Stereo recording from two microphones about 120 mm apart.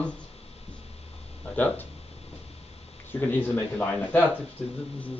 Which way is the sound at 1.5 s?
15° left (ahead or behind).